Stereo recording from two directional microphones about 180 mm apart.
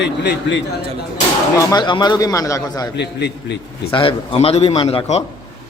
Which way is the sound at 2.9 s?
70° left (ahead or behind).